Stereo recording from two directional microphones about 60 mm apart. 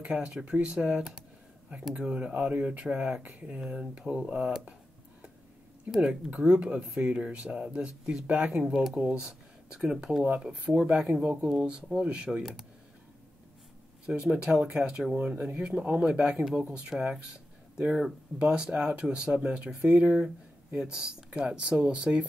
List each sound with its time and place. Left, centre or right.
0.1 s speech: centre
5.9 s speech: right
10.2 s speech: right; by 12.6 s centre
14.0 s speech: centre
15.1 s speech: right
16.9 s speech: centre
17.3 s a sound: right
18.4 s speech: centre